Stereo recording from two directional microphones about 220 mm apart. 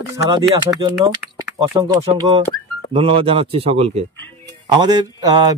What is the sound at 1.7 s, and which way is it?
Speech, 15° right (ahead or behind).